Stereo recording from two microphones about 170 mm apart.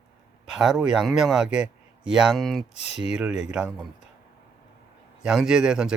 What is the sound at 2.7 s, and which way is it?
Speech, 40° left (ahead or behind).